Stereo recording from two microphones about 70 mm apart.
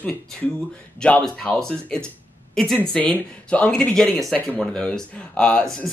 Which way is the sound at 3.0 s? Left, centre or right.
Left.